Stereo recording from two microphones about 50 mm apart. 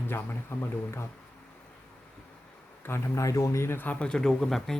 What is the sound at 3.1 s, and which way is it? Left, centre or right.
Speech, left.